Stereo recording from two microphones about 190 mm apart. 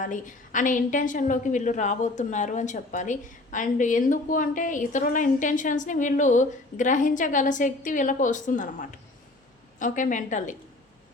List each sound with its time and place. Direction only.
0.0 s a woman's voice: 45° left (ahead or behind)